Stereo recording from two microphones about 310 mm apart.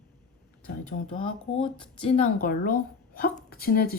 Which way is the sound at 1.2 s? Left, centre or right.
Centre.